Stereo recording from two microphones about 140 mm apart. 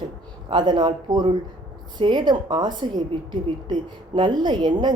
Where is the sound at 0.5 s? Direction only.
30° right (ahead or behind).